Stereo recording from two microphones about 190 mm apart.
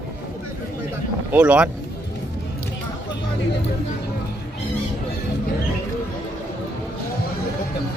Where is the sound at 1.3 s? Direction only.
5° right (ahead or behind).